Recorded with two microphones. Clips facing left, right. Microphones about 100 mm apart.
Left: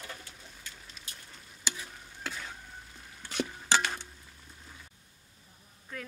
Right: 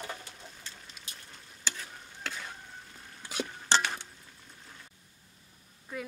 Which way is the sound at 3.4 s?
10° left (ahead or behind).